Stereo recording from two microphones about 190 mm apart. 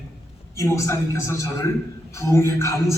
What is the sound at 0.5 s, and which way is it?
A man's voice, 15° left (ahead or behind).